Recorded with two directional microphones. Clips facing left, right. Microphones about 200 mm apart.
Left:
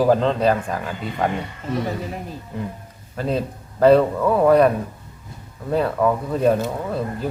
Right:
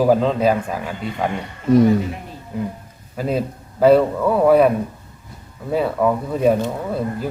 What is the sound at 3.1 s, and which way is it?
A man's voice, 10° right (ahead or behind).